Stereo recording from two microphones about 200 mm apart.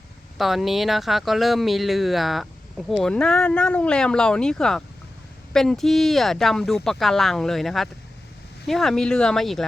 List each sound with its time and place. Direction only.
0.3 s speech: centre (ahead or behind)